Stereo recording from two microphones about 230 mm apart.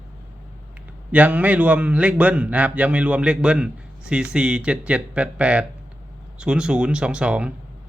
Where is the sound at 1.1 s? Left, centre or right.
Centre.